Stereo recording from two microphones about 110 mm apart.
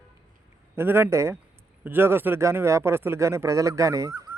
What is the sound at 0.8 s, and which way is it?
Speech, 20° right (ahead or behind).